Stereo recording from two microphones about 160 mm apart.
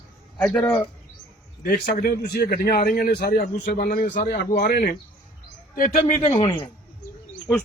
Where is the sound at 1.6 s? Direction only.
60° left (ahead or behind).